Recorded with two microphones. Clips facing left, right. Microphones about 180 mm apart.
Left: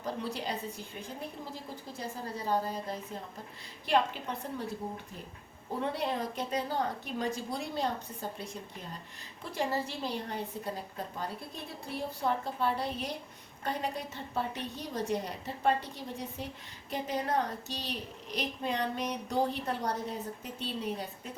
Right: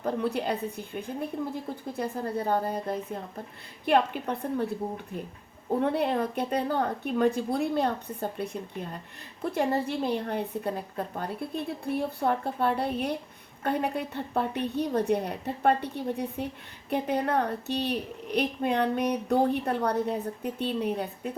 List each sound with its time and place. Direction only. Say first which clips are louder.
0.0 s a woman's voice: right 7 dB; 60° right (ahead or behind)
5.8 s a woman's voice: right 6 dB; 60° right (ahead or behind)